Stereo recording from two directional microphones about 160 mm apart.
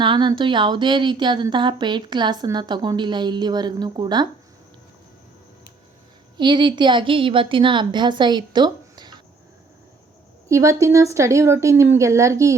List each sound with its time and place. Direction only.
0.0 s speech: 30° right (ahead or behind)
6.3 s speech: 30° right (ahead or behind)
10.5 s speech: 20° right (ahead or behind)